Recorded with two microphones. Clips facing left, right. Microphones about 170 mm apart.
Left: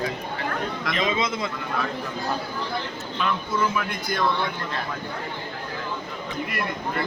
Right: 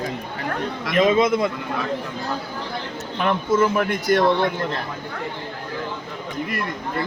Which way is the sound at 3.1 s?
60° right (ahead or behind).